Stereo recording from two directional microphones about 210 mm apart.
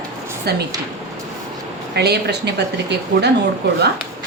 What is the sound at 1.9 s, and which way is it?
A woman's voice, 50° right (ahead or behind).